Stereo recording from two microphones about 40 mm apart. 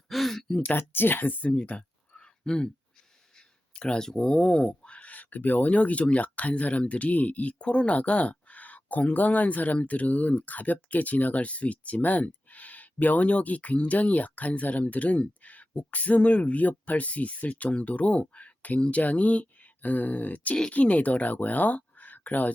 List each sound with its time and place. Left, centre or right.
0.1 s gasp: centre
0.8 s speech: left
1.4 s speech: left
3.8 s speech: left
4.8 s speech: left